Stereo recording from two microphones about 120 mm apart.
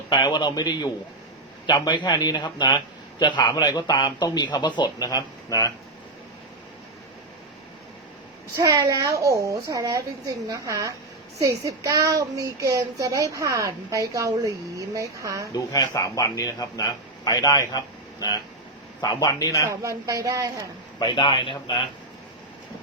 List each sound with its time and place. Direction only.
0.1 s a man's voice: 40° left (ahead or behind)
8.5 s a woman's voice: 25° right (ahead or behind)
15.5 s a man's voice: 30° left (ahead or behind)
19.6 s a woman's voice: 25° right (ahead or behind)
21.0 s a man's voice: 40° left (ahead or behind)